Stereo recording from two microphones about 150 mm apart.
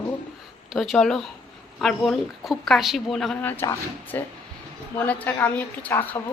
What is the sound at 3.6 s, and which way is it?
A woman's voice, 20° left (ahead or behind).